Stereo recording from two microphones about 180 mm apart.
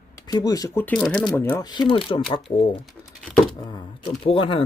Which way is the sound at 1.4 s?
20° left (ahead or behind).